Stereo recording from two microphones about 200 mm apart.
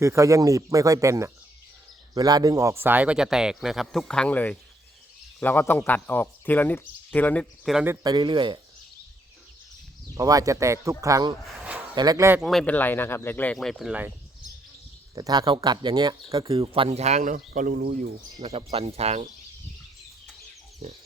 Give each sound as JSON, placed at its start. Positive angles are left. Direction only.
{"t": 0.0, "sound": "speech", "side_deg": -15}
{"t": 8.0, "sound": "speech", "side_deg": -20}
{"t": 10.2, "sound": "speech", "side_deg": -15}
{"t": 12.4, "sound": "speech", "side_deg": 0}
{"t": 15.1, "sound": "speech", "side_deg": -20}
{"t": 18.3, "sound": "speech", "side_deg": -30}